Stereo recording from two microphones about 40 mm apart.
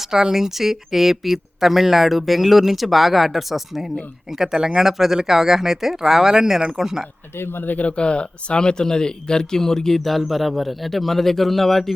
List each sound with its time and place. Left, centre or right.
0.1 s speech: centre
7.3 s speech: left
7.8 s speech: left; by 11.9 s centre